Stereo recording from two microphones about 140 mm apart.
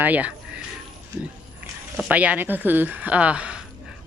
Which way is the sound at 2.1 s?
10° right (ahead or behind).